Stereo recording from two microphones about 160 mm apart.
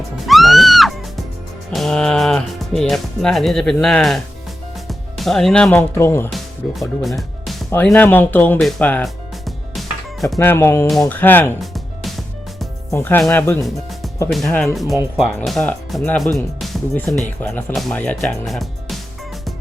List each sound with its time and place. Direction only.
0.3 s music: centre (ahead or behind)
1.7 s speech: 5° left (ahead or behind)
4.9 s music: centre (ahead or behind)
5.9 s speech: 15° left (ahead or behind)
6.3 s speech: centre (ahead or behind)
7.9 s speech: 10° left (ahead or behind)
9.0 s music: centre (ahead or behind)
10.3 s speech: 15° left (ahead or behind)
11.6 s music: centre (ahead or behind)
12.9 s speech: 15° left (ahead or behind)
14.3 s speech: centre (ahead or behind)
17.4 s speech: 10° left (ahead or behind)